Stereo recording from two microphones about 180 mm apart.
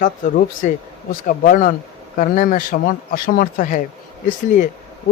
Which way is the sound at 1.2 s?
50° left (ahead or behind).